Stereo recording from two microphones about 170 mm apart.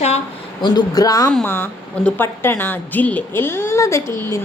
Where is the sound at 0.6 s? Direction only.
25° left (ahead or behind).